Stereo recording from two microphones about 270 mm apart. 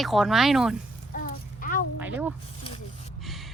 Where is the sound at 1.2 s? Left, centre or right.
Left.